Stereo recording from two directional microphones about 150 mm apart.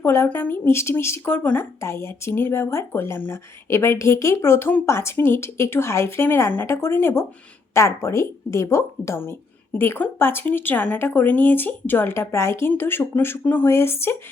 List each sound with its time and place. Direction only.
0.0 s a woman's voice: 15° left (ahead or behind)